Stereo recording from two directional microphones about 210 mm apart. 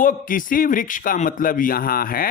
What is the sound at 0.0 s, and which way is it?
Speech, 40° left (ahead or behind).